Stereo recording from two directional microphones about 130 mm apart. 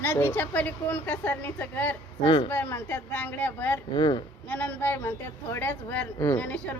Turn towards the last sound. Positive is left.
turn(degrees=10)  # may be behind; listen again after turning